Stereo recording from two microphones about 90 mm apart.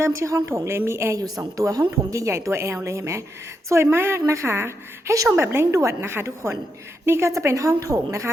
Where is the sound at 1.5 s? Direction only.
40° right (ahead or behind).